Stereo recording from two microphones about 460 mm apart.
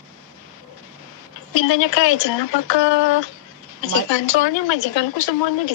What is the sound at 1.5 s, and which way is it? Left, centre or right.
A woman's voice, left.